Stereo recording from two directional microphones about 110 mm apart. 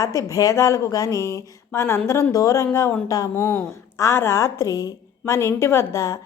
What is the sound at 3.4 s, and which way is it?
Speech, 20° left (ahead or behind).